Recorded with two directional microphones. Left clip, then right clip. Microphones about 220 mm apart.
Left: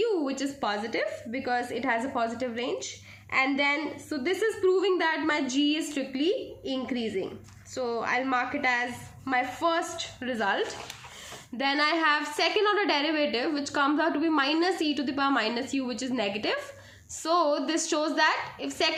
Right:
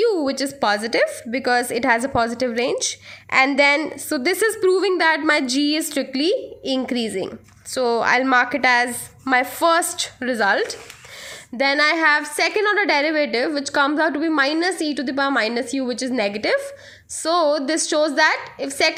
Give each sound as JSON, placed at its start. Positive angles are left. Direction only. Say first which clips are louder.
{"t": 0.0, "sound": "a woman's voice", "louder": "right 8 dB", "side_deg": -40}